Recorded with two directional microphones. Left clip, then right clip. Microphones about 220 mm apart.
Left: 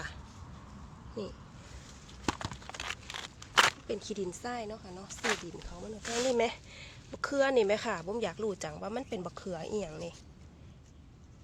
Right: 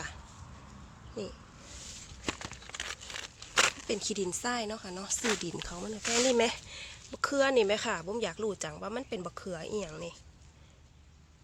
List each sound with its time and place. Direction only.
1.2 s speech: 5° right (ahead or behind)
2.7 s a sound: 30° left (ahead or behind)
3.8 s speech: 20° right (ahead or behind); by 5.9 s 35° right (ahead or behind)
6.0 s speech: 20° right (ahead or behind); by 10.2 s 5° right (ahead or behind)